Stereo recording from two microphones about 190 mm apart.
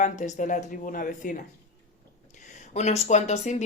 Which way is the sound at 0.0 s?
40° left (ahead or behind).